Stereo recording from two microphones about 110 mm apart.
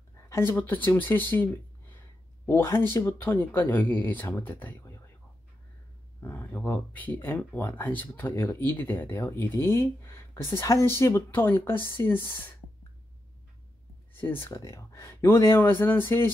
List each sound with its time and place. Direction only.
0.3 s speech: 20° left (ahead or behind)
6.2 s speech: 15° left (ahead or behind)
14.1 s speech: 20° left (ahead or behind)
14.5 s speech: 30° left (ahead or behind)